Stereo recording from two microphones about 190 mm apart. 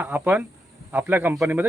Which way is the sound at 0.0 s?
10° right (ahead or behind).